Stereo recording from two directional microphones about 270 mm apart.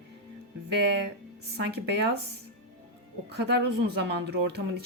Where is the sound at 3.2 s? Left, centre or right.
Right.